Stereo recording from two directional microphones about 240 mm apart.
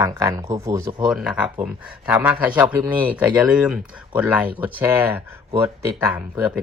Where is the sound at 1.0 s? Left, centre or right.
Centre.